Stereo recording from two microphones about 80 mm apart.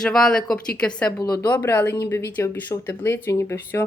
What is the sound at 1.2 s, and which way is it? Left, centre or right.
Speech, left.